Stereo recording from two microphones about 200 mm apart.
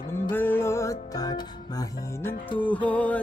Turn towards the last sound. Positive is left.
turn(degrees=5)  # may be behind; listen again after turning